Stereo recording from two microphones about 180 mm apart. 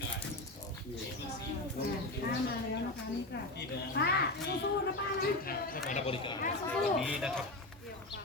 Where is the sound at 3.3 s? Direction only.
65° left (ahead or behind).